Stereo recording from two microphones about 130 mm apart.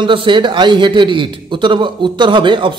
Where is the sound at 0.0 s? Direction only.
40° right (ahead or behind).